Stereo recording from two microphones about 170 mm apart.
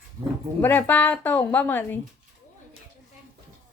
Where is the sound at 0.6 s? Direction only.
10° left (ahead or behind).